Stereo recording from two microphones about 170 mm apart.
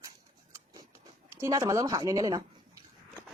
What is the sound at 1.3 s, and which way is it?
Speech, 15° right (ahead or behind).